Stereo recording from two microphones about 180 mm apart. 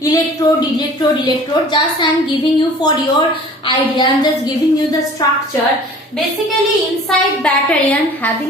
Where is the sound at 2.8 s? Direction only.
25° left (ahead or behind).